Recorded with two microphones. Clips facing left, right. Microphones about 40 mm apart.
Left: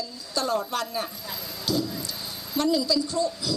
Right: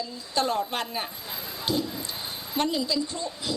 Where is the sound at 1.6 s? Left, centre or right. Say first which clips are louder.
Left 1 dB; right.